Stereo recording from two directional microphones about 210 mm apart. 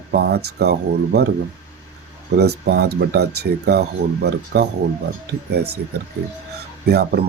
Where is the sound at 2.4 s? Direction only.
50° right (ahead or behind).